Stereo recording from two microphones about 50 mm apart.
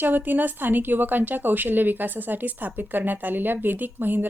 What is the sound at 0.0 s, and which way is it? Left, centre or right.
Speech, right.